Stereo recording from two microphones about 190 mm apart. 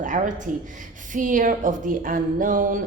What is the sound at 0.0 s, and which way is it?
A woman's voice, 40° right (ahead or behind).